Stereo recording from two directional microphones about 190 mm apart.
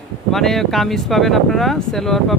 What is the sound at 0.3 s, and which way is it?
Speech, centre (ahead or behind).